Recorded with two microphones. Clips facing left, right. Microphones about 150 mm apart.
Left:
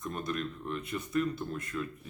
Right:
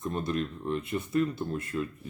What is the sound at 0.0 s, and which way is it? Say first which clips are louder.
Speech: right 4 dB; 30° right (ahead or behind).